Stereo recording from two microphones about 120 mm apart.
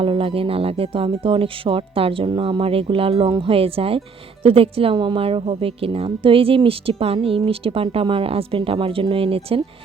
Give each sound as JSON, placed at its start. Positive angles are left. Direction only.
{"t": 0.0, "sound": "a woman's voice", "side_deg": -50}